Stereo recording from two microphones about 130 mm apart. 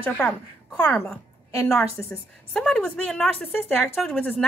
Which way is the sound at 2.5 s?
5° left (ahead or behind).